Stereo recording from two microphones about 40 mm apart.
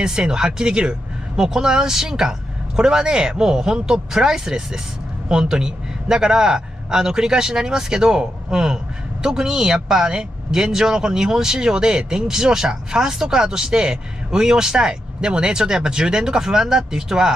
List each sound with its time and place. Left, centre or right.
0.0 s speech: centre